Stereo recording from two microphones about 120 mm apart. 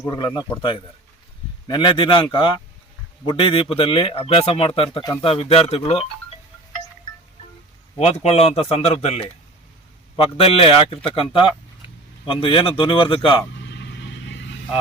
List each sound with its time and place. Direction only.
0.0 s speech: 35° left (ahead or behind); by 6.1 s 50° left (ahead or behind)
7.9 s a man's voice: 65° left (ahead or behind); by 13.4 s 45° left (ahead or behind)